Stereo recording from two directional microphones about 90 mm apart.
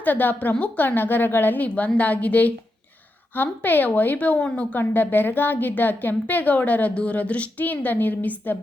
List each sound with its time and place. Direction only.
0.0 s a woman's voice: 20° left (ahead or behind)